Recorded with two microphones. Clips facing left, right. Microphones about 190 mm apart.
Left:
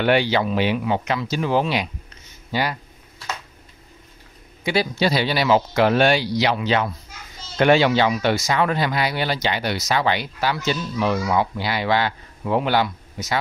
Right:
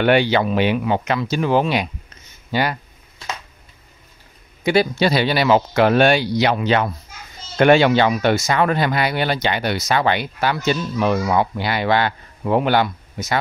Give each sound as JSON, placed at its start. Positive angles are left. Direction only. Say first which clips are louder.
{"t": 0.0, "sound": "speech", "louder": "right 3 dB", "side_deg": -60}
{"t": 4.6, "sound": "speech", "louder": "right 4 dB", "side_deg": -55}